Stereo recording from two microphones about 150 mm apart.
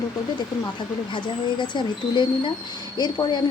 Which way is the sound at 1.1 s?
30° left (ahead or behind).